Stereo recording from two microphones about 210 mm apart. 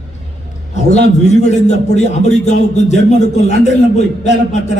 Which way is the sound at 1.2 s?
35° left (ahead or behind).